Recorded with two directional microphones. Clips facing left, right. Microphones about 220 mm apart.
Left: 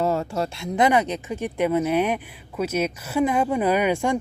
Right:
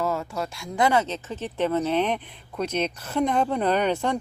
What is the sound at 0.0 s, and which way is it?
Speech, 30° left (ahead or behind).